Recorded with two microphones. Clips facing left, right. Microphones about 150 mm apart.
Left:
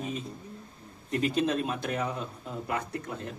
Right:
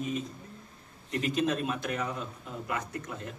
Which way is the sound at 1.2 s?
35° left (ahead or behind).